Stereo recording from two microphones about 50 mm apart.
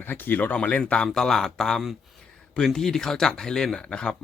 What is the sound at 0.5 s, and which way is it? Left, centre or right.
Speech, left.